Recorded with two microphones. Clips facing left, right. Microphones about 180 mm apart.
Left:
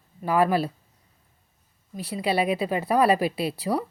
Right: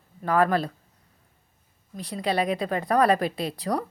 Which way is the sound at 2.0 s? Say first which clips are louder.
Left 1 dB; 5° left (ahead or behind).